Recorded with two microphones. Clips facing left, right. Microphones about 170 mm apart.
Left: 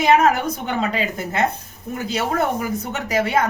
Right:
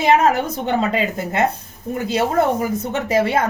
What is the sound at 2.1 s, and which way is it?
Speech, 25° right (ahead or behind).